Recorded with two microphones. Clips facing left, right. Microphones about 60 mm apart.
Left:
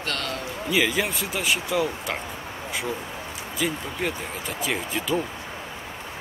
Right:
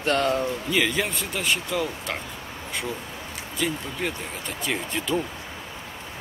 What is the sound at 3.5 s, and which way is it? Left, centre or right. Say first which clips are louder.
Speech: even; centre.